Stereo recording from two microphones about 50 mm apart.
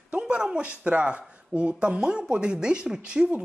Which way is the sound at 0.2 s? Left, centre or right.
Centre.